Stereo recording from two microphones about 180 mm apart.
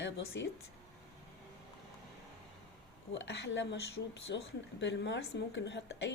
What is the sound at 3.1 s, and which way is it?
A woman's voice, 80° left.